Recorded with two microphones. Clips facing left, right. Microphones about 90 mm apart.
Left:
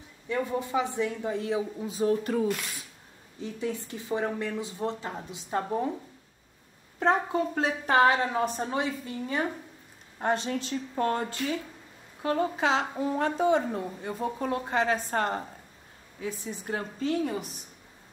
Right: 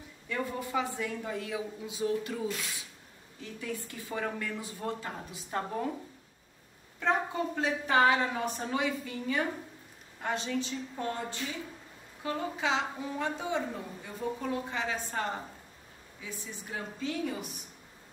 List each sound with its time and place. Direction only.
0.3 s speech: 25° left (ahead or behind); by 2.3 s 40° left (ahead or behind)
2.3 s speech: 55° left (ahead or behind)
3.5 s speech: 25° left (ahead or behind)
7.0 s a woman's voice: 45° left (ahead or behind)
10.2 s speech: 45° left (ahead or behind)
12.2 s a woman's voice: 50° left (ahead or behind)